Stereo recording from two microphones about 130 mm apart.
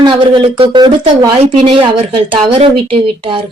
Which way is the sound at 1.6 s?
45° right (ahead or behind).